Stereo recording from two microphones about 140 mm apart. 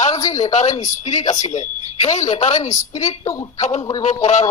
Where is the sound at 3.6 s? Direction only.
55° left (ahead or behind).